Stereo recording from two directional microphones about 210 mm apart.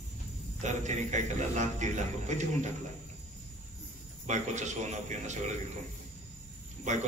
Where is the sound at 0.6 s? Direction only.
35° right (ahead or behind).